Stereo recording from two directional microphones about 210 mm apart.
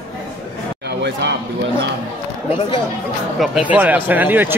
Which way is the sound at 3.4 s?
5° right (ahead or behind).